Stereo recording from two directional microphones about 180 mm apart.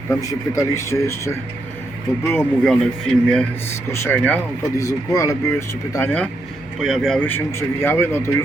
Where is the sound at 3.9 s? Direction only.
15° left (ahead or behind).